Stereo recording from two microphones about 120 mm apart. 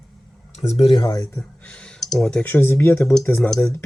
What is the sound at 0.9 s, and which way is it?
Speech, 40° left (ahead or behind).